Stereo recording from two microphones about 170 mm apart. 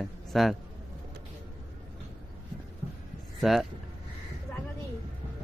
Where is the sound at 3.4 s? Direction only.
Centre (ahead or behind).